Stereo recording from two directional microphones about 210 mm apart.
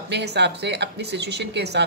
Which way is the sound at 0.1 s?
55° right (ahead or behind).